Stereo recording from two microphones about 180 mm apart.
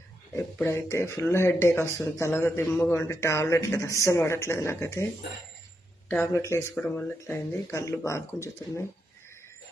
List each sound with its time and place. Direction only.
0.3 s speech: 15° left (ahead or behind)
6.1 s speech: 15° left (ahead or behind)